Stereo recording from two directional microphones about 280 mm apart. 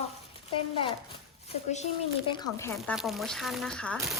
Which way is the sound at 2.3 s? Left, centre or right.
Centre.